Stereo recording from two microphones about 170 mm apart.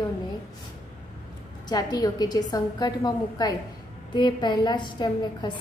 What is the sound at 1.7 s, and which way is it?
A woman's voice, 25° left (ahead or behind).